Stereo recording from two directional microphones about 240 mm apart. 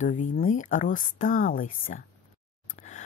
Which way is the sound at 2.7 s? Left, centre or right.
Left.